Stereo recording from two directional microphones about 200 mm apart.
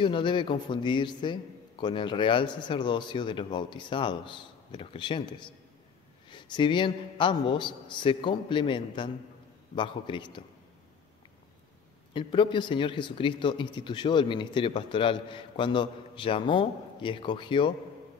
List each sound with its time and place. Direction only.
0.0 s speech: 25° left (ahead or behind)
12.1 s speech: 25° left (ahead or behind)